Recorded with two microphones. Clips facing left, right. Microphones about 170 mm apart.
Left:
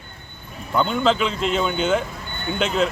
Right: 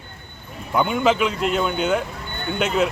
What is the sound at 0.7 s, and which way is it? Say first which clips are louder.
A man's voice: right 1 dB; 10° right (ahead or behind).